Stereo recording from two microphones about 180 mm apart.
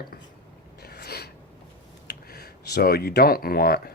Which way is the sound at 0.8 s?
60° left (ahead or behind).